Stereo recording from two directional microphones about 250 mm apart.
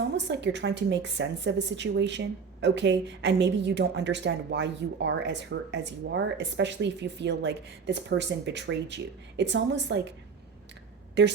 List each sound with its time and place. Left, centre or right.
0.1 s speech: right
11.2 s speech: right